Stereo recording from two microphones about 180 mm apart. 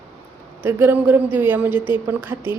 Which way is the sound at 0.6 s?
10° right (ahead or behind).